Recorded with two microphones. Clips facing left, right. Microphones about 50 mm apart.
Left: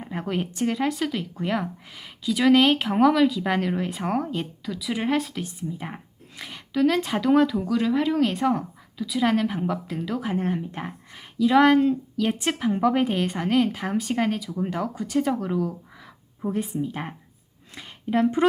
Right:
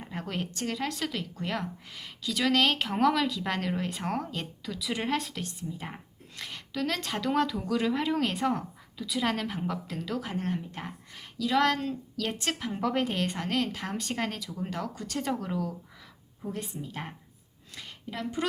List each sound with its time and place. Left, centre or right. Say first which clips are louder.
0.0 s speech: left 7 dB; centre
16.5 s speech: left 10 dB; centre
17.7 s a sound: left 13 dB; left
18.2 s a woman's voice: left 11 dB; left